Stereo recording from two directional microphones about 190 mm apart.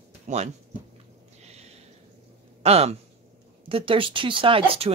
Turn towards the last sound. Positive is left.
turn(degrees=-30)  # may be behind; listen again after turning